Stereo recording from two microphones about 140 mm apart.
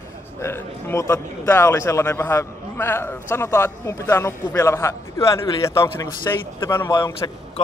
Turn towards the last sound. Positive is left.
turn(degrees=30)  # may be behind; listen again after turning